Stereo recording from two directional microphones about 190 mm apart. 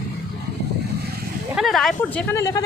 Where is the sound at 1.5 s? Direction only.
Centre (ahead or behind).